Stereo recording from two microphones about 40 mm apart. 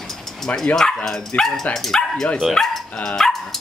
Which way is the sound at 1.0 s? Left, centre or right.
Centre.